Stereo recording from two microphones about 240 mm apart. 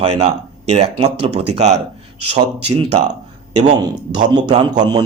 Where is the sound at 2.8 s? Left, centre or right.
Right.